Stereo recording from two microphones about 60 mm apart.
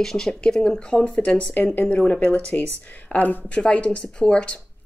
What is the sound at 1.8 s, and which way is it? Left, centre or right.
Speech, left.